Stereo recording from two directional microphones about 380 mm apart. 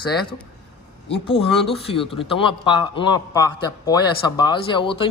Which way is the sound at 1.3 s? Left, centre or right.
Centre.